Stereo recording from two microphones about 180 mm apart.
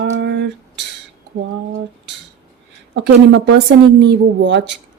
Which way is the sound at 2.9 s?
80° right.